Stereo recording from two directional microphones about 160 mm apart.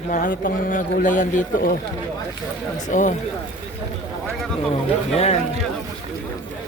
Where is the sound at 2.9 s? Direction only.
50° left (ahead or behind).